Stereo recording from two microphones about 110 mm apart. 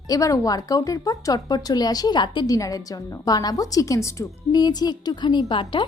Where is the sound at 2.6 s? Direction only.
30° left (ahead or behind).